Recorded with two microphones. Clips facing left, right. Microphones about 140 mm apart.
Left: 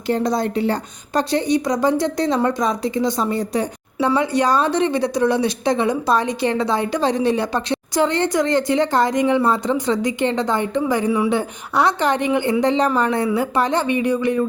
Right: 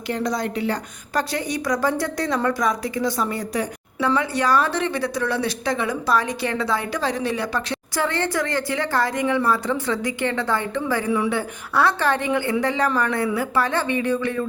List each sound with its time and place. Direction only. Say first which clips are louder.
0.1 s a woman's voice: left 5 dB; 30° left (ahead or behind)